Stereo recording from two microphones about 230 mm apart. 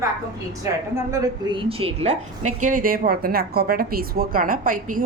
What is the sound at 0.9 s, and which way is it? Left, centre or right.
A woman's voice, centre.